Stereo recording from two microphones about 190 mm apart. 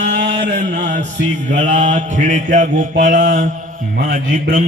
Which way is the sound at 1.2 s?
40° right (ahead or behind).